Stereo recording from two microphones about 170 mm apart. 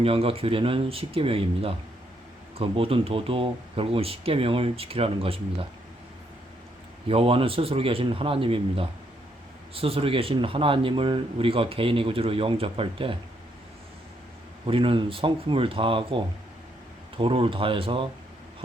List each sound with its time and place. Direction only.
0.0 s speech: 35° right (ahead or behind)
7.1 s speech: 35° right (ahead or behind)
14.7 s speech: 30° right (ahead or behind)